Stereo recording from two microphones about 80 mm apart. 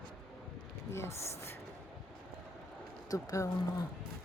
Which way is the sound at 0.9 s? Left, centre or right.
Left.